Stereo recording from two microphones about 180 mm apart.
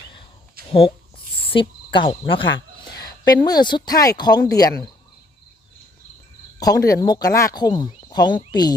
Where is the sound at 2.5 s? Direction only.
90° left.